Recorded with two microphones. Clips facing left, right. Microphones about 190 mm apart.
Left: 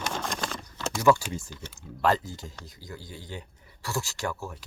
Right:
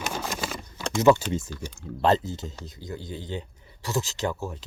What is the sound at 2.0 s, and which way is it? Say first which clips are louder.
Speech: right 3 dB; 25° right (ahead or behind).